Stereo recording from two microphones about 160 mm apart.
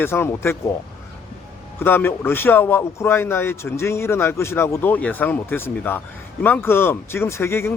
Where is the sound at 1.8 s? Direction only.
15° left (ahead or behind).